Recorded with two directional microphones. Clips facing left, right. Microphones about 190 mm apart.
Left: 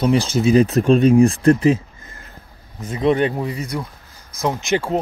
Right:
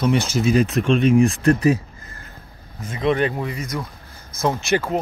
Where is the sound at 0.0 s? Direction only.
30° left (ahead or behind).